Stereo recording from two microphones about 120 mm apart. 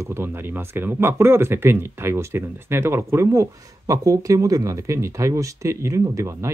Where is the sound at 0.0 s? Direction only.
20° right (ahead or behind).